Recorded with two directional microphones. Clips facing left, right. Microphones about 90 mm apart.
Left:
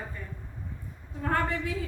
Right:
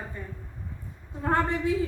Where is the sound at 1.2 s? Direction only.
25° right (ahead or behind).